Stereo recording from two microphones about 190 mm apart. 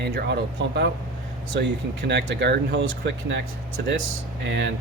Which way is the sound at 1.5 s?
65° right (ahead or behind).